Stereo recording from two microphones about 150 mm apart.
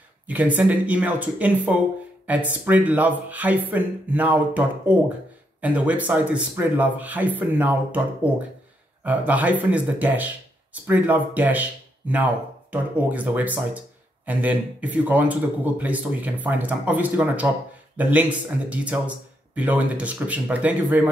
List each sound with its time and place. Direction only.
0.3 s speech: 10° right (ahead or behind)